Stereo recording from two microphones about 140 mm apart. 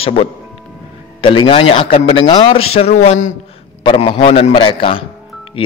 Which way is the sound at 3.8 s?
35° left (ahead or behind).